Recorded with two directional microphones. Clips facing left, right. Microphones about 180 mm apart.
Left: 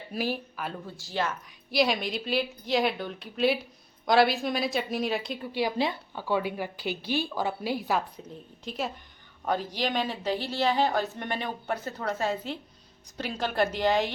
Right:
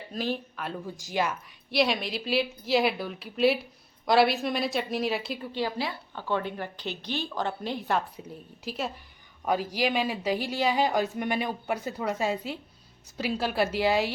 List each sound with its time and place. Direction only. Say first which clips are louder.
0.1 s a woman's voice: even; 10° left (ahead or behind)
0.9 s speech: right 3 dB; 10° right (ahead or behind)
1.7 s a woman's voice: even; centre (ahead or behind)
5.5 s a woman's voice: left 2 dB; 10° left (ahead or behind)
5.7 s speech: left 4 dB; 20° left (ahead or behind)
6.1 s a woman's voice: left 1 dB; 10° left (ahead or behind); by 14.1 s 5° right (ahead or behind)